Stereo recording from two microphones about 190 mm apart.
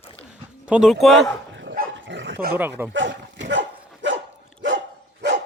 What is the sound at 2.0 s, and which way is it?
Dog, 70° right (ahead or behind).